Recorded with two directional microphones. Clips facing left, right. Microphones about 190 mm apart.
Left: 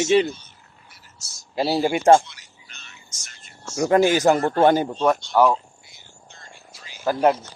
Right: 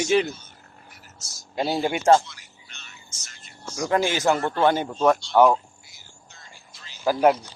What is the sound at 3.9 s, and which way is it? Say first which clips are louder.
Speech: left 5 dB; 40° left (ahead or behind).